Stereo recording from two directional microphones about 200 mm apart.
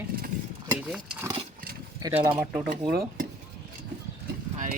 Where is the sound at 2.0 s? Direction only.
15° right (ahead or behind).